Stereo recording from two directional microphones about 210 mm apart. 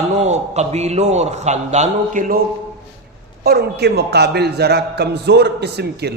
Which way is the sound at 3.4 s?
50° right (ahead or behind).